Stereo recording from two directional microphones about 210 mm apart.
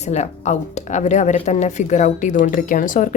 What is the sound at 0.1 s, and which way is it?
Speech, 30° left (ahead or behind).